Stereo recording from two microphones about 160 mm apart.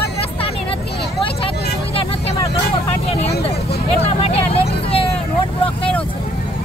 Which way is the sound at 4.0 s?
40° left (ahead or behind).